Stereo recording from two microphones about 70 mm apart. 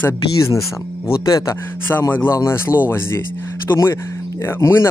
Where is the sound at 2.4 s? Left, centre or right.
Left.